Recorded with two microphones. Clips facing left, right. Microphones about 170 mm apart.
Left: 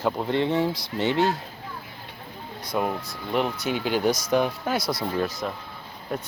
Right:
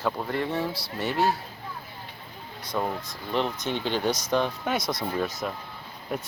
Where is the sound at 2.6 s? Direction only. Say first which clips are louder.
Left 3 dB; 10° left (ahead or behind); by 6.3 s 5° right (ahead or behind).